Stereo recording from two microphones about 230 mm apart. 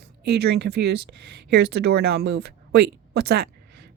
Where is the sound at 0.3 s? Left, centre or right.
Right.